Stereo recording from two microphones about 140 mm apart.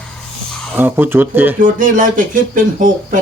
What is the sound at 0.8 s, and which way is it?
Speech, 15° right (ahead or behind).